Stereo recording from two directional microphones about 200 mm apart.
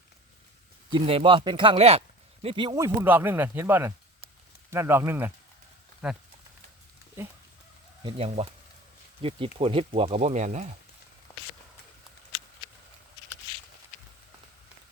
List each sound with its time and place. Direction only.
0.9 s speech: 25° right (ahead or behind)
8.0 s speech: 30° right (ahead or behind)